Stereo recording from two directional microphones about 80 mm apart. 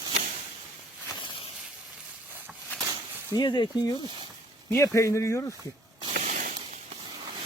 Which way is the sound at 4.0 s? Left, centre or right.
Right.